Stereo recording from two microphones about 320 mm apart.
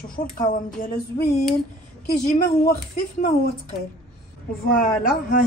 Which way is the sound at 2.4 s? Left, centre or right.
Left.